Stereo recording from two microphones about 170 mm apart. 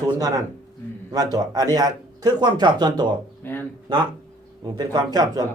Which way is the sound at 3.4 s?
10° left (ahead or behind).